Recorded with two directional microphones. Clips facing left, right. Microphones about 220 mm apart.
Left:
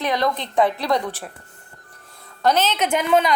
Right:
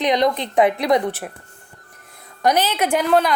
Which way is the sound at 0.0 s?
20° right (ahead or behind).